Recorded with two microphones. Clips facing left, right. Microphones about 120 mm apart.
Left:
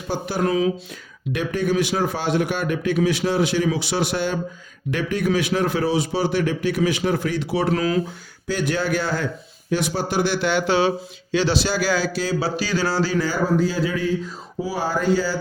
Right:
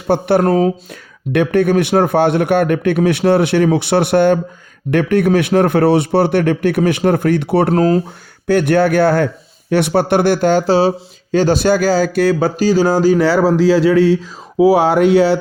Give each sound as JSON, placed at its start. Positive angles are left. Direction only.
{"t": 0.1, "sound": "a man's voice", "side_deg": -60}
{"t": 1.3, "sound": "a man's voice", "side_deg": -60}
{"t": 7.7, "sound": "speech", "side_deg": -40}
{"t": 8.4, "sound": "a man's voice", "side_deg": -60}
{"t": 12.1, "sound": "a sound", "side_deg": -60}
{"t": 13.1, "sound": "speech", "side_deg": -85}